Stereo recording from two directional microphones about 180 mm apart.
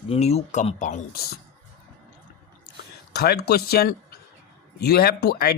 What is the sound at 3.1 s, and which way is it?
Speech, 60° left (ahead or behind).